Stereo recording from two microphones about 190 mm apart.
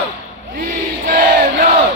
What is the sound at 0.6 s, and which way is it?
Crowd, 50° right (ahead or behind).